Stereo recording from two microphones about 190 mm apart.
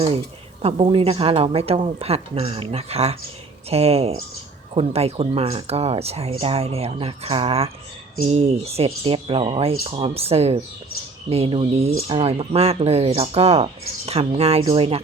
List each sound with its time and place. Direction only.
0.6 s speech: 30° right (ahead or behind)